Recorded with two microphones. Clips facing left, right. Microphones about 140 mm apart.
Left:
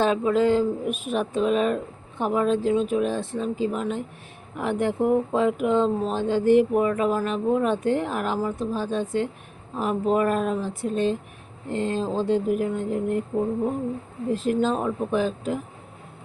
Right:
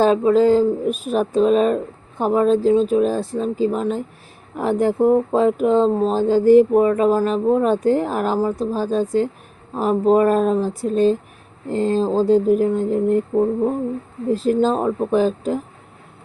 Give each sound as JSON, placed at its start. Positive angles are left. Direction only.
{"t": 0.0, "sound": "speech", "side_deg": -35}
{"t": 14.3, "sound": "speech", "side_deg": -35}